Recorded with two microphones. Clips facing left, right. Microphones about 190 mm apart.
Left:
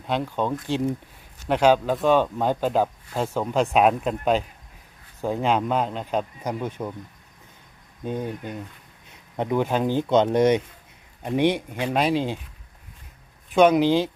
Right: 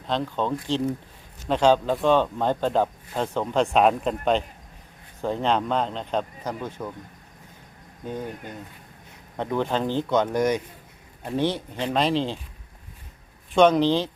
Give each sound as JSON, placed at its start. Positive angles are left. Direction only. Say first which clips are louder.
{"t": 0.1, "sound": "speech", "louder": "left 1 dB", "side_deg": 10}
{"t": 8.0, "sound": "speech", "louder": "left 3 dB", "side_deg": 20}
{"t": 13.5, "sound": "speech", "louder": "left 1 dB", "side_deg": 5}